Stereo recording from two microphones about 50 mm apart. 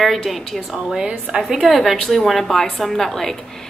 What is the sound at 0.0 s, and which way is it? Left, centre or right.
A woman's voice, centre.